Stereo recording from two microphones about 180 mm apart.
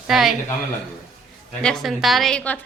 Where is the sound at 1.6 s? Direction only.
5° left (ahead or behind).